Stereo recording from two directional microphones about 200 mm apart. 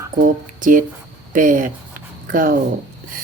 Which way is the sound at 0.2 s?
40° right (ahead or behind).